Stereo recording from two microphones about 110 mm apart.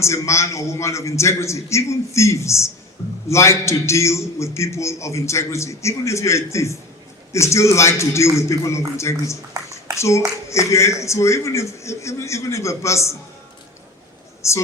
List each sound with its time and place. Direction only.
0.0 s a man's voice: 25° left (ahead or behind)
14.4 s a woman's voice: 25° left (ahead or behind)